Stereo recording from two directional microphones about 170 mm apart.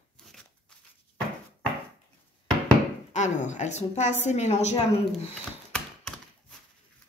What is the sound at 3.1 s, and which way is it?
A woman's voice, 45° left (ahead or behind).